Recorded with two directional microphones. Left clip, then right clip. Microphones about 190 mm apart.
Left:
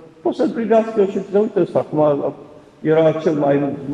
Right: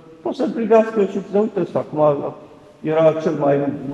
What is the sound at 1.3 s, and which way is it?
A man's voice, 5° right (ahead or behind).